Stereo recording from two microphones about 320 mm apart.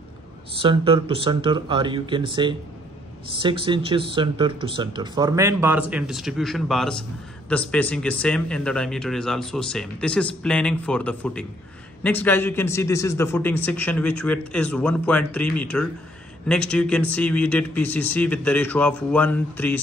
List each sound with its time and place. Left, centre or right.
0.6 s speech: centre